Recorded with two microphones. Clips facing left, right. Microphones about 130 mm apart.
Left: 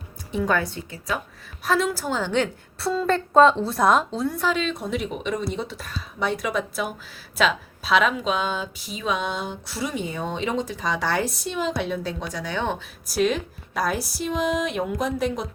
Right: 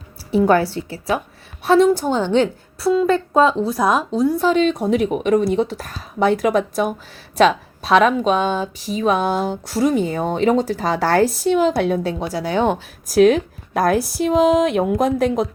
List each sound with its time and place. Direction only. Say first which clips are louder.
0.5 s a woman's voice: right 8 dB; 30° right (ahead or behind)
2.8 s speech: right 7 dB; 10° right (ahead or behind)
4.1 s a woman's voice: right 8 dB; 20° right (ahead or behind)
4.4 s speech: right 9 dB; 45° right (ahead or behind)
9.8 s speech: right 10 dB; 50° right (ahead or behind)
11.4 s a woman's voice: right 10 dB; 60° right (ahead or behind)
12.2 s speech: right 9 dB; 35° right (ahead or behind); by 15.4 s 50° right (ahead or behind)